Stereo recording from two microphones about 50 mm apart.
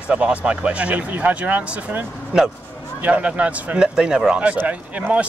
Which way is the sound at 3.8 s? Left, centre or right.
Centre.